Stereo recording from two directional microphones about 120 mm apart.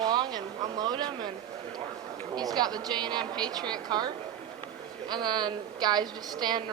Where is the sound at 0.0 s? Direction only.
35° right (ahead or behind).